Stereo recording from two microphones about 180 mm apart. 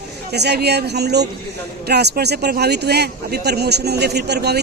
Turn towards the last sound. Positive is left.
turn(degrees=-65)  # may be behind; listen again after turning